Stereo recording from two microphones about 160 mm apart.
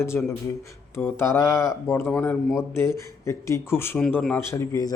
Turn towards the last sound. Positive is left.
turn(degrees=20)  # may be behind; listen again after turning